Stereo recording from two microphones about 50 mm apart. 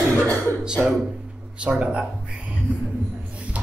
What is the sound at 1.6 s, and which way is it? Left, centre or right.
Speech, centre.